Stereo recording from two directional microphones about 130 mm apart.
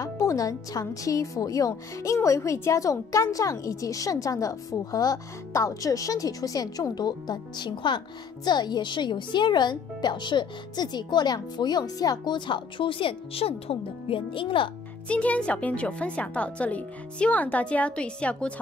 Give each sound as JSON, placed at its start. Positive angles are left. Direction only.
{"t": 0.0, "sound": "speech", "side_deg": 25}
{"t": 15.0, "sound": "speech", "side_deg": 10}